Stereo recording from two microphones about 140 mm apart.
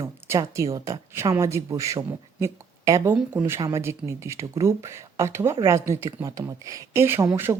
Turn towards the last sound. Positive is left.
turn(degrees=-15)  # may be behind; listen again after turning